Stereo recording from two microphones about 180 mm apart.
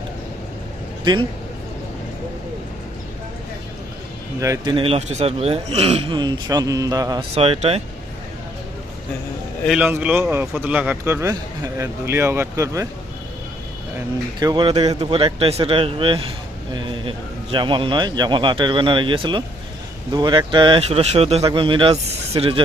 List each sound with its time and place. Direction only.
4.4 s speech: 15° right (ahead or behind)
7.3 s speech: 35° right (ahead or behind)
9.6 s a man's voice: 10° right (ahead or behind)
14.3 s speech: 25° right (ahead or behind)